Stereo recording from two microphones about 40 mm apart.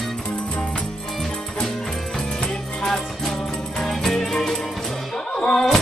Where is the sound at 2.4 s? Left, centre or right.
Centre.